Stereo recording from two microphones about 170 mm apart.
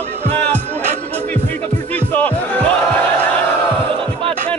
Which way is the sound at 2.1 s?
10° left (ahead or behind).